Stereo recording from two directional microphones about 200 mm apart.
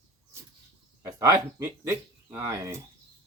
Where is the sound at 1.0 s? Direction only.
15° right (ahead or behind).